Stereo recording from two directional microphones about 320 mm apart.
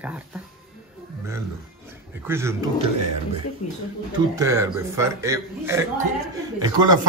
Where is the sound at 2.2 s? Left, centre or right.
Centre.